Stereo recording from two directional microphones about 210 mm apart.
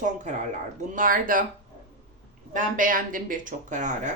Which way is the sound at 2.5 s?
40° right (ahead or behind).